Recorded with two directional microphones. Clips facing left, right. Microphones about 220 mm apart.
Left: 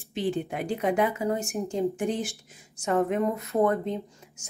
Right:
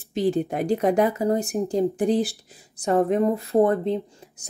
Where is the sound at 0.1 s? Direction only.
40° right (ahead or behind).